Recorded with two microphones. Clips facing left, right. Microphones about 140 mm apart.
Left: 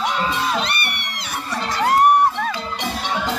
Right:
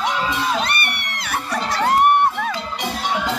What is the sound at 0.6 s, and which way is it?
Crowd, 50° right (ahead or behind).